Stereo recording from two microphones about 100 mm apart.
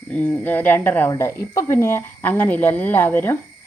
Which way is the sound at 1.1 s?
30° left (ahead or behind).